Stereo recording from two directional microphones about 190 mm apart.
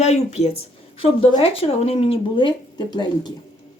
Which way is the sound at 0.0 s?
35° left (ahead or behind).